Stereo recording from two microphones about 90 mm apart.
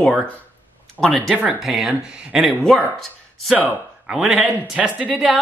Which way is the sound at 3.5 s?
15° right (ahead or behind).